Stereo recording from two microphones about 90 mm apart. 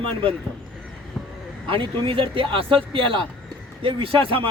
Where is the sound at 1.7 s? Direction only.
75° right (ahead or behind).